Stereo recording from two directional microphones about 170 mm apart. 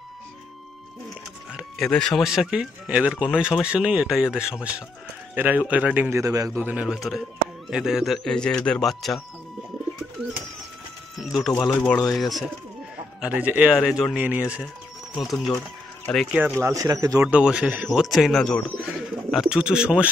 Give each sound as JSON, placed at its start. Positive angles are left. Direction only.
{"t": 1.5, "sound": "speech", "side_deg": 0}
{"t": 6.6, "sound": "speech", "side_deg": -10}
{"t": 11.1, "sound": "bird", "side_deg": 0}
{"t": 11.6, "sound": "speech", "side_deg": 5}
{"t": 16.1, "sound": "speech", "side_deg": 0}
{"t": 16.6, "sound": "speech", "side_deg": -20}
{"t": 17.2, "sound": "speech", "side_deg": -5}